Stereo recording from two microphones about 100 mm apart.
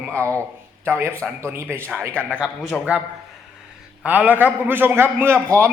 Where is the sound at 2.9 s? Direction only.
15° right (ahead or behind).